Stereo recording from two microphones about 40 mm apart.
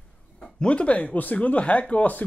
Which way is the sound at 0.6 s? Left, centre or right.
Left.